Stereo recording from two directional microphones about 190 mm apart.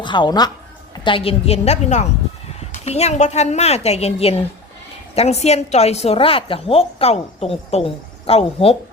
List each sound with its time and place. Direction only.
0.0 s a woman's voice: 25° left (ahead or behind)